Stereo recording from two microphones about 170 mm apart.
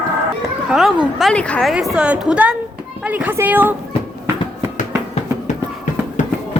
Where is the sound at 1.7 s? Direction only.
5° right (ahead or behind).